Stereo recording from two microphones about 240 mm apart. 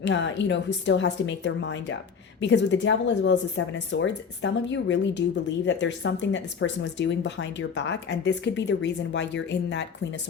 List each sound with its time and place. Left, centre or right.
0.0 s speech: left